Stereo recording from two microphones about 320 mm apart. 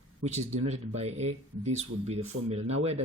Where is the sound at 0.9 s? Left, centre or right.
Centre.